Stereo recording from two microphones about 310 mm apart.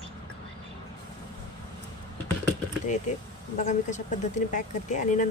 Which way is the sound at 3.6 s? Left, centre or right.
Left.